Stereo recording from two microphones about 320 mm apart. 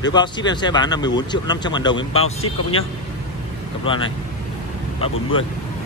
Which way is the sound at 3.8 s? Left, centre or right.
Centre.